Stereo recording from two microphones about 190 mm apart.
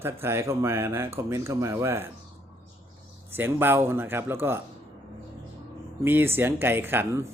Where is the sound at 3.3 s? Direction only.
10° right (ahead or behind).